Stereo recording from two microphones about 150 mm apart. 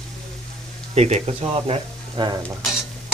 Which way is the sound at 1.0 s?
45° right (ahead or behind).